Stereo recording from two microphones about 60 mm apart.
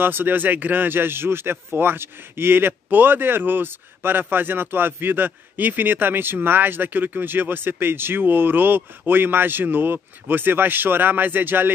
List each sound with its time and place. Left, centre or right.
0.0 s speech: right